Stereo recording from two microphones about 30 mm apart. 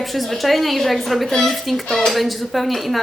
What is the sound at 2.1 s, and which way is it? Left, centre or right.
Speech, centre.